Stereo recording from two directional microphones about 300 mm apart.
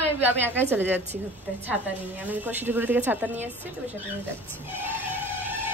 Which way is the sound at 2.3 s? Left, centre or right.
Centre.